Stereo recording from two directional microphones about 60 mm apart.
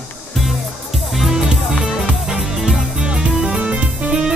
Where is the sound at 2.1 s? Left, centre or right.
Centre.